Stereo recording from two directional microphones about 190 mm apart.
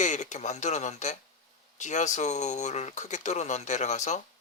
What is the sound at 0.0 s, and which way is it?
Speech, 40° left (ahead or behind).